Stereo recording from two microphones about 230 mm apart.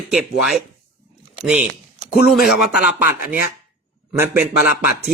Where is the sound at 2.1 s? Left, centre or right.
Centre.